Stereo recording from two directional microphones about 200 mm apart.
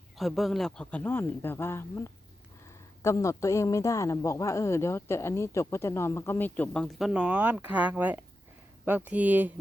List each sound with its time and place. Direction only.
0.2 s speech: centre (ahead or behind)